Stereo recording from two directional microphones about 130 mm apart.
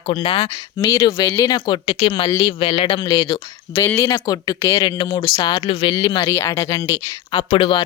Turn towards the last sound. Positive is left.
turn(degrees=40)  # may be behind; listen again after turning